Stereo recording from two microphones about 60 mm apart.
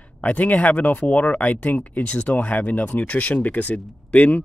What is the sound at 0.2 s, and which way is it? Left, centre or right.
Speech, left.